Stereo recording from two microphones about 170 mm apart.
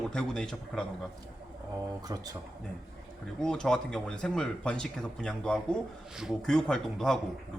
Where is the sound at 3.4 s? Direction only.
5° left (ahead or behind).